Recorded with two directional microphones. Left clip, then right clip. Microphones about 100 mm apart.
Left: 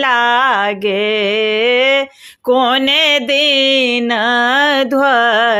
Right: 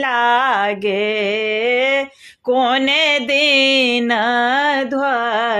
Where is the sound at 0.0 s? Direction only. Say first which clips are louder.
Left 4 dB; 35° left (ahead or behind).